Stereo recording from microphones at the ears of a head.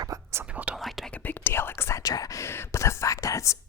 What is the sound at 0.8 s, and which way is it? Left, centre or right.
Whispering, centre.